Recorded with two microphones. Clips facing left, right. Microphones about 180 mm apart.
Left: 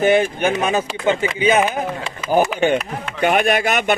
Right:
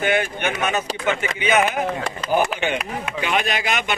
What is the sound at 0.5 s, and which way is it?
Speech, 35° left (ahead or behind).